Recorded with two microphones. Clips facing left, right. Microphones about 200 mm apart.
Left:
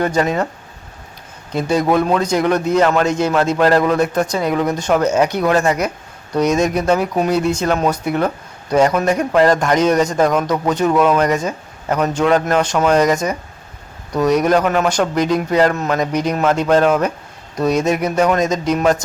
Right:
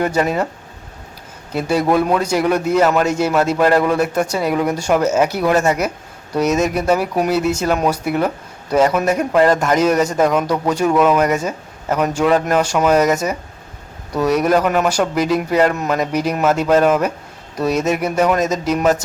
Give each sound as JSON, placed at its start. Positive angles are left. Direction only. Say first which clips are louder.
{"t": 0.0, "sound": "a man's voice", "louder": "even", "side_deg": -5}
{"t": 1.5, "sound": "a man's voice", "louder": "even", "side_deg": -5}